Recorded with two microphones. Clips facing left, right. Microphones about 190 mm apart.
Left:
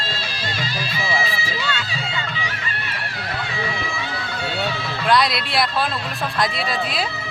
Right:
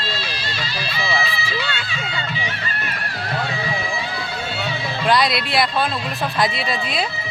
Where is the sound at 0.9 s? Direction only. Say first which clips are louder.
Right 1 dB; 45° left (ahead or behind).